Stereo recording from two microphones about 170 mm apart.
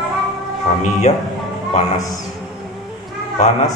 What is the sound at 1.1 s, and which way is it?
Speech, 40° left (ahead or behind).